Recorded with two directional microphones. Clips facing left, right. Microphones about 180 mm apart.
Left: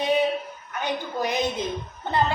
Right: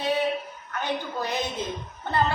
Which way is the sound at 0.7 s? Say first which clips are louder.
Left 1 dB; 15° left (ahead or behind).